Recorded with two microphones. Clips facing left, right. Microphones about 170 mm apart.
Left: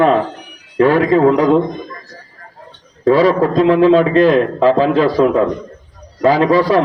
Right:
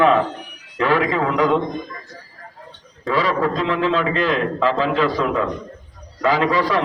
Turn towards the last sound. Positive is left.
turn(degrees=40)  # may be behind; listen again after turning